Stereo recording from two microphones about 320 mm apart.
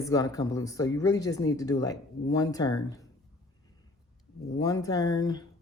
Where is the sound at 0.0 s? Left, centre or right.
Centre.